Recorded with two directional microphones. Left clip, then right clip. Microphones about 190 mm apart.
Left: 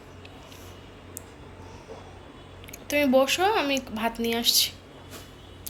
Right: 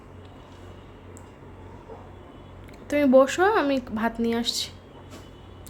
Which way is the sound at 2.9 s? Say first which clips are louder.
Right 3 dB; 35° right (ahead or behind).